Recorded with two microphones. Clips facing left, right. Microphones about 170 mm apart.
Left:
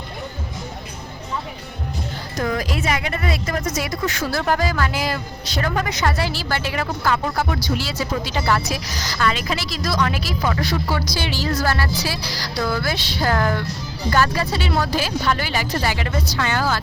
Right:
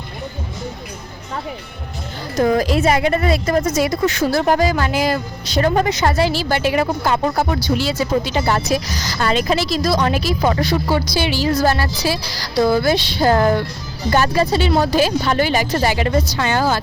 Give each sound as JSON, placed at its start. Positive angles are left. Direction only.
{"t": 2.4, "sound": "a woman's voice", "side_deg": -35}